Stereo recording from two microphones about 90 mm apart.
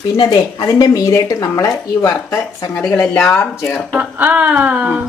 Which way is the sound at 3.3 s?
20° left (ahead or behind).